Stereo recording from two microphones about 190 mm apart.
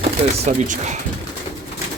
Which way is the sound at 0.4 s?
40° right (ahead or behind).